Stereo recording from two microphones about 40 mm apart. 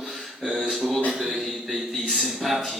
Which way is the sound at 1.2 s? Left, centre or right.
Centre.